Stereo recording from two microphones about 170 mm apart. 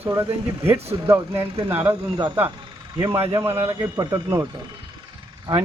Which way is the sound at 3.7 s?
15° right (ahead or behind).